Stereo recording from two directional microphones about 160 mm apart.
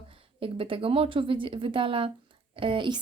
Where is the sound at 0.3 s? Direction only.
35° right (ahead or behind).